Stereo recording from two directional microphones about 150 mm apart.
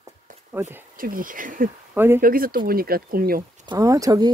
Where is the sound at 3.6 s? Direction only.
20° right (ahead or behind).